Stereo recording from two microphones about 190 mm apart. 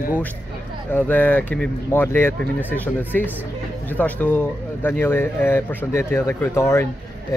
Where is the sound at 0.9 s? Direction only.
10° left (ahead or behind).